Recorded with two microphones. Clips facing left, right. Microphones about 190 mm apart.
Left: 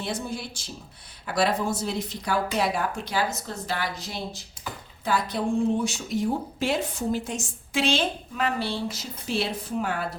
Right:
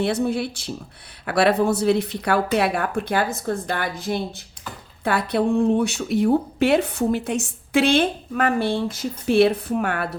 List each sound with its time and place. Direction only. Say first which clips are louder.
0.0 s speech: right 10 dB; 65° right (ahead or behind)